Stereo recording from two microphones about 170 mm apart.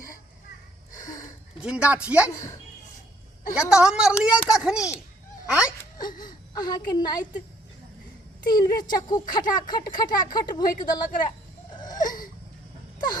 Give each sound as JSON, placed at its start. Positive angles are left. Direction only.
{"t": 1.6, "sound": "a woman's voice", "side_deg": -5}
{"t": 2.3, "sound": "speech", "side_deg": 20}
{"t": 3.5, "sound": "a woman's voice", "side_deg": -5}
{"t": 6.2, "sound": "a woman's voice", "side_deg": 25}
{"t": 8.4, "sound": "speech", "side_deg": 25}
{"t": 11.7, "sound": "wheeze", "side_deg": 25}